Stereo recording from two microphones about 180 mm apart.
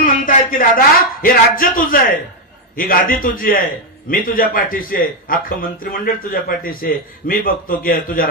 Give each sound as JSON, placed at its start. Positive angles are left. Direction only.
{"t": 0.0, "sound": "a man's voice", "side_deg": 50}